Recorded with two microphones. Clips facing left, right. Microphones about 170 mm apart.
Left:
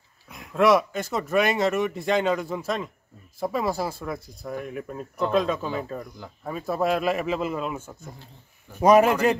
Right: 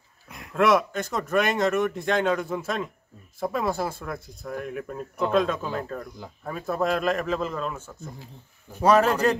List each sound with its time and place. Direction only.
0.3 s a man's voice: centre (ahead or behind)